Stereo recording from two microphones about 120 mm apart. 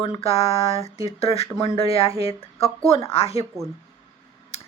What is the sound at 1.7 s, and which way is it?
Speech, 50° left (ahead or behind).